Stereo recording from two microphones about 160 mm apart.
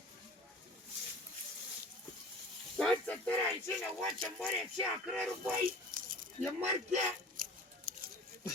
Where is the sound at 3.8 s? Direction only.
5° left (ahead or behind).